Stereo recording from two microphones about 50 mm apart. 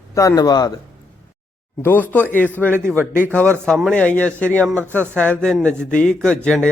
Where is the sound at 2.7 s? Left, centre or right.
Right.